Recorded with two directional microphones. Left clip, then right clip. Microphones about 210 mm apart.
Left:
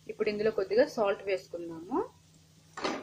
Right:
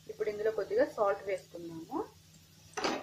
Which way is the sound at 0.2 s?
20° left (ahead or behind).